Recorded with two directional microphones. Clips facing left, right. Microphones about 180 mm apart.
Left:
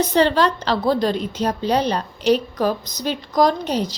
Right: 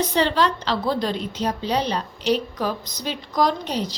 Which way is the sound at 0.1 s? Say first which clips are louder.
Left 4 dB; 45° left (ahead or behind).